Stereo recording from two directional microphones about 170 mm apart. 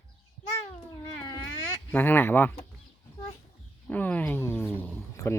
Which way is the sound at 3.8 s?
10° left (ahead or behind).